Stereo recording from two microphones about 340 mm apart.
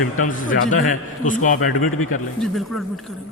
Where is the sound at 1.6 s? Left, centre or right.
Left.